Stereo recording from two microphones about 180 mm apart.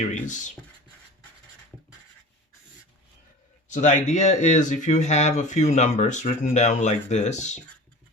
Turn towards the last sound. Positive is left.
turn(degrees=40)  # may be behind; listen again after turning